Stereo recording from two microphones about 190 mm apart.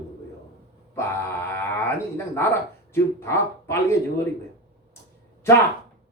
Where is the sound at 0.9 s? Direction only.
15° left (ahead or behind).